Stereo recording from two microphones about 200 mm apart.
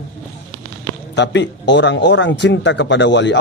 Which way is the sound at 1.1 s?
60° left (ahead or behind).